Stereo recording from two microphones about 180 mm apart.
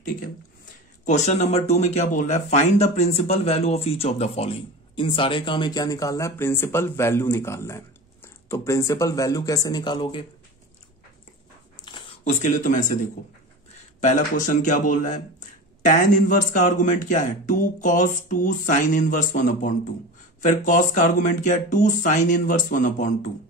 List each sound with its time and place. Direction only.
1.0 s speech: 40° left (ahead or behind)
11.9 s a sound: 25° left (ahead or behind)
12.4 s speech: 45° left (ahead or behind)
14.0 s speech: 45° left (ahead or behind)